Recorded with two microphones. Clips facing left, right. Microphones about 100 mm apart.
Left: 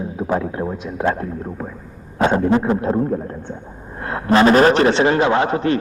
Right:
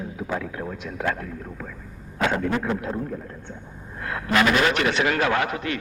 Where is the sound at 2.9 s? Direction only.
40° left (ahead or behind).